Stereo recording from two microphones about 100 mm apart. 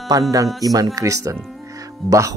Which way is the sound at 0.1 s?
35° right (ahead or behind).